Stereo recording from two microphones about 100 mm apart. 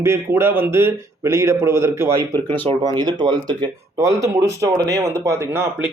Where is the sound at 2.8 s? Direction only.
45° right (ahead or behind).